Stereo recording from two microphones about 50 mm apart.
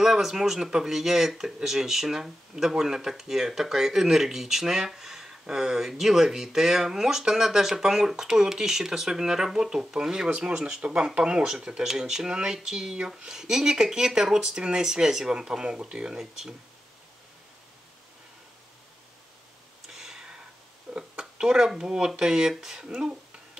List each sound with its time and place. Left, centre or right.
0.0 s speech: centre
19.9 s a sound: centre
20.9 s speech: centre